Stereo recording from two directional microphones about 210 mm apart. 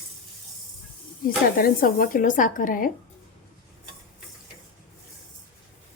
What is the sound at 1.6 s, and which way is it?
Speech, 40° left (ahead or behind).